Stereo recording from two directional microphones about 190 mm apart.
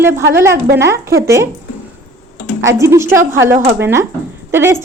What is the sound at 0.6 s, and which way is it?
Speech, 60° right (ahead or behind).